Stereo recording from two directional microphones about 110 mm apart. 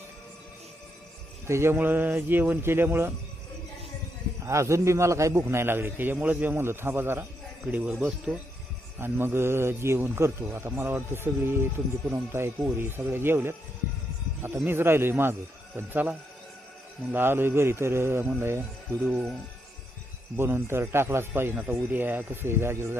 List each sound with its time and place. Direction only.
1.5 s a man's voice: 25° right (ahead or behind)
4.4 s a man's voice: 25° right (ahead or behind)
7.6 s speech: 10° right (ahead or behind)
9.0 s a man's voice: 20° right (ahead or behind)
20.3 s a man's voice: 20° right (ahead or behind)